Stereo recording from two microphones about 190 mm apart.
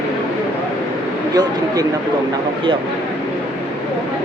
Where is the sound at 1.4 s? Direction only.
20° right (ahead or behind).